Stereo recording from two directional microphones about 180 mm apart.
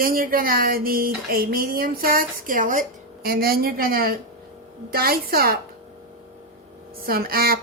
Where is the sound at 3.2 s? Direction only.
55° right (ahead or behind).